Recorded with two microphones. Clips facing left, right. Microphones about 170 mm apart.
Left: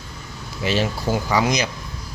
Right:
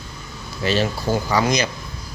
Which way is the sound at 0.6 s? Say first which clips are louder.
Right 1 dB; 15° left (ahead or behind).